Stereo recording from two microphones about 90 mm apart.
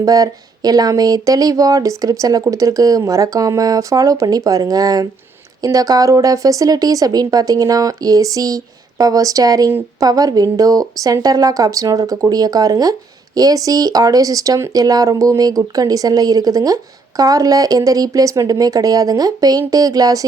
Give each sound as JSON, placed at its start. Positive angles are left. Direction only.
{"t": 0.0, "sound": "speech", "side_deg": -45}